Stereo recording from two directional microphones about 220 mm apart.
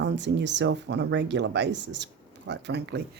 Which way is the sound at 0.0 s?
55° right (ahead or behind).